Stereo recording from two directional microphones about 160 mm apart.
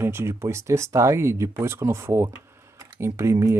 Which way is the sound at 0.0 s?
15° right (ahead or behind).